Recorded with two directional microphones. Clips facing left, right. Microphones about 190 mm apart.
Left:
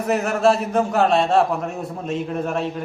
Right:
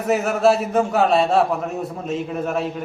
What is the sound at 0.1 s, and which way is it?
A man's voice, centre (ahead or behind).